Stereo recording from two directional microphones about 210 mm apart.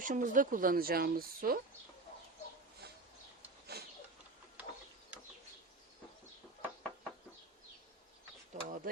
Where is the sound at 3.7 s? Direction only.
50° right (ahead or behind).